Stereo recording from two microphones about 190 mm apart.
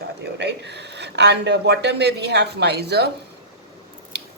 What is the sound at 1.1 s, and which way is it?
Speech, 65° right (ahead or behind).